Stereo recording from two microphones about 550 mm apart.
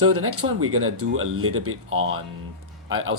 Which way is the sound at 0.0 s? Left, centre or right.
Right.